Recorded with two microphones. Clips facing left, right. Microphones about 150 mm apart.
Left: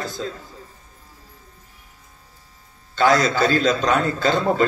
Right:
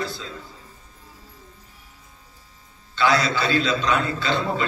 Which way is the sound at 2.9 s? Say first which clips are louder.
Left 4 dB; 45° left (ahead or behind).